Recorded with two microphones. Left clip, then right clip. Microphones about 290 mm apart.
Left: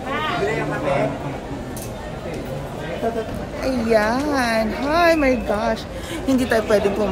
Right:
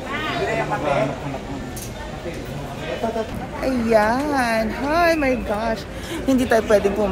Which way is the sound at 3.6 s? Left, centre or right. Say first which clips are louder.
Right 1 dB; centre.